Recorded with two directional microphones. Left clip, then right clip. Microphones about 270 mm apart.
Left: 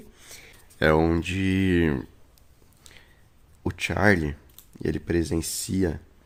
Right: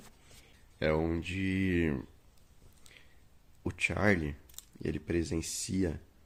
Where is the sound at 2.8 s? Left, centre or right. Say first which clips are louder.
Left 6 dB; centre.